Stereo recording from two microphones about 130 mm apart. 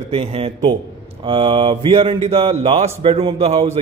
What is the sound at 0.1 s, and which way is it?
Speech, 50° right (ahead or behind).